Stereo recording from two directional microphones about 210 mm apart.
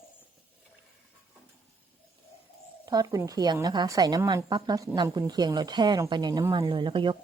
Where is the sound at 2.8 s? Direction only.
15° right (ahead or behind).